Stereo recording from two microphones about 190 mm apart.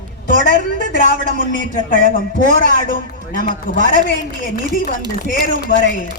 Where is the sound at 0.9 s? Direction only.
45° left (ahead or behind).